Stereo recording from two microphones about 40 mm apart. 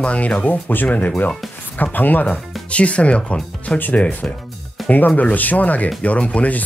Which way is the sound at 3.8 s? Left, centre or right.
Left.